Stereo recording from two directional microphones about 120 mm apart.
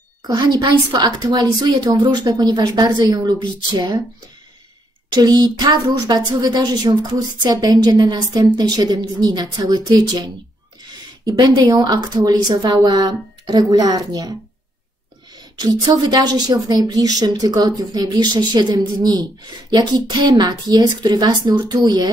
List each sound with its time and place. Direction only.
0.3 s a woman's voice: 35° right (ahead or behind)
5.1 s a woman's voice: 35° right (ahead or behind)
15.3 s a woman's voice: 35° right (ahead or behind)